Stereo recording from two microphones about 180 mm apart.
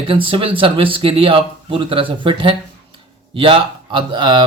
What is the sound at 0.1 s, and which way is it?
A man's voice, 30° right (ahead or behind).